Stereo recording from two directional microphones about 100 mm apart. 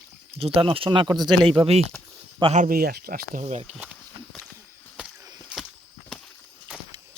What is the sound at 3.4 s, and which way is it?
Speech, 90° right.